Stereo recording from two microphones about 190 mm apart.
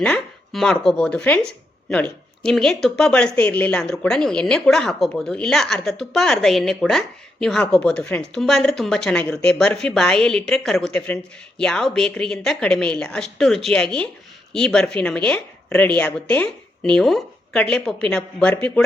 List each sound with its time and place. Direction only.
0.0 s speech: 5° left (ahead or behind)